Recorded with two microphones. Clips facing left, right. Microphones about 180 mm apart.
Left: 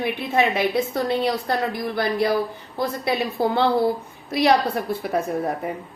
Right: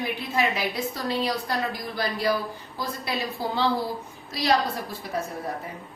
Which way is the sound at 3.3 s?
60° left (ahead or behind).